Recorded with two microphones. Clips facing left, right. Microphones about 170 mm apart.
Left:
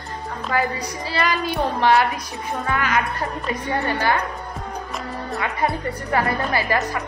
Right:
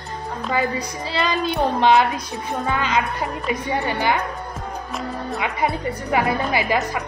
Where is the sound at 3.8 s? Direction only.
15° right (ahead or behind).